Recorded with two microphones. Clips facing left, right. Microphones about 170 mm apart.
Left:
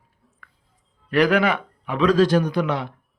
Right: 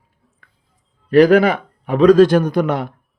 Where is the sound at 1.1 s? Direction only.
35° right (ahead or behind).